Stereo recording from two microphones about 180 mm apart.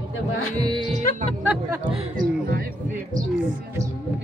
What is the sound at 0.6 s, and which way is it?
Speech, 25° right (ahead or behind).